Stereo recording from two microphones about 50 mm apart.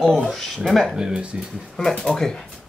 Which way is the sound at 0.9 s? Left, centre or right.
Centre.